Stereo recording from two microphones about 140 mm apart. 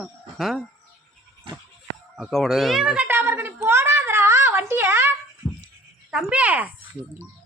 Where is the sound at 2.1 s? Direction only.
Centre (ahead or behind); by 5.1 s 15° right (ahead or behind).